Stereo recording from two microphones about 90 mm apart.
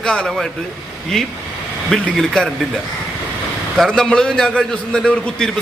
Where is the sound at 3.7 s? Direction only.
5° left (ahead or behind).